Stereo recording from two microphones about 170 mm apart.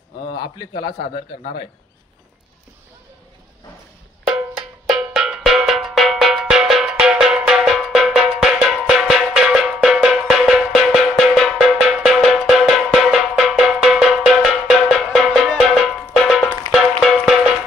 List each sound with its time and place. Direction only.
0.8 s a man's voice: 60° left (ahead or behind)
4.3 s percussion: centre (ahead or behind)
16.8 s music: centre (ahead or behind)